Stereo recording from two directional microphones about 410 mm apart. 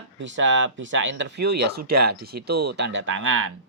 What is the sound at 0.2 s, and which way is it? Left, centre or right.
Speech, right.